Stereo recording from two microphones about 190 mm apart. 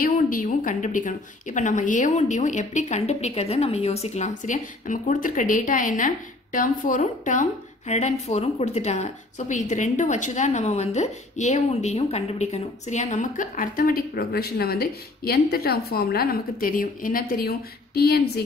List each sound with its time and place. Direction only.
0.0 s a woman's voice: 45° left (ahead or behind)